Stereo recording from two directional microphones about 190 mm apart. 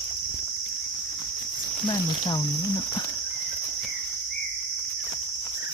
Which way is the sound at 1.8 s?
25° left (ahead or behind).